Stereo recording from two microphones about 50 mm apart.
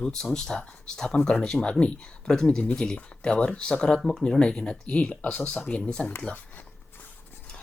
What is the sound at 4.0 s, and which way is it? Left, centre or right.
Speech, centre.